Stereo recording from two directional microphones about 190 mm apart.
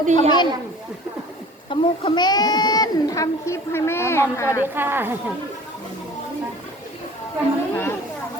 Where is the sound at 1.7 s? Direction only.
25° left (ahead or behind).